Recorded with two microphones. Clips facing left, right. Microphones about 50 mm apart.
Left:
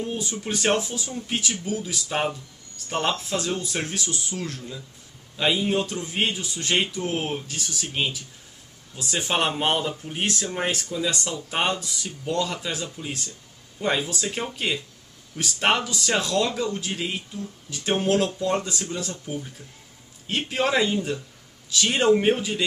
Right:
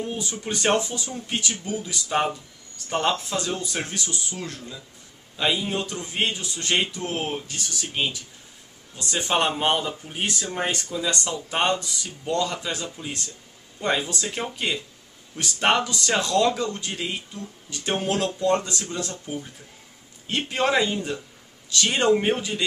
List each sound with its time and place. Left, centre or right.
0.4 s speech: centre
4.0 s speech: centre
5.4 s speech: centre